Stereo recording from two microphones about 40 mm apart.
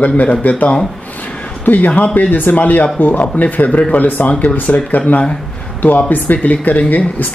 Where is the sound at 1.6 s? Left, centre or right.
Left.